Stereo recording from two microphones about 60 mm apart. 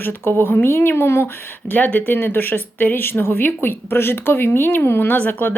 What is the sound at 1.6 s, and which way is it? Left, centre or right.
Speech, left.